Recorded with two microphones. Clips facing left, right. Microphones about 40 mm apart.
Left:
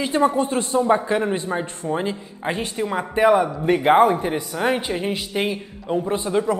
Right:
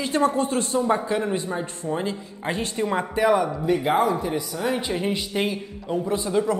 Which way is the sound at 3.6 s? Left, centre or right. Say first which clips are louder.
Left 8 dB; left.